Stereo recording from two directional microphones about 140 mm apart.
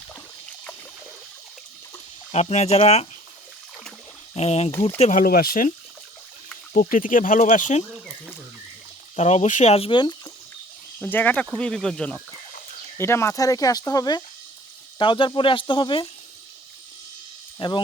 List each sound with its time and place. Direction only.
2.3 s speech: 50° left (ahead or behind)
4.4 s speech: 50° left (ahead or behind)
4.9 s speech: 65° left (ahead or behind); by 5.7 s 85° left
6.9 s speech: 75° left (ahead or behind)
9.1 s speech: 55° left (ahead or behind); by 10.2 s 35° left (ahead or behind)
11.0 s speech: 10° left (ahead or behind)
13.0 s speech: 20° left (ahead or behind); by 16.0 s 35° left (ahead or behind)
17.6 s speech: 35° left (ahead or behind)